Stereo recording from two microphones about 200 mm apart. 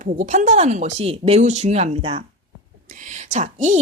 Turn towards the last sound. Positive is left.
turn(degrees=-35)  # may be behind; listen again after turning